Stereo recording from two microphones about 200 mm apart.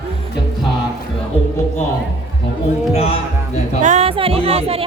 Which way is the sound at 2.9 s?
30° left (ahead or behind).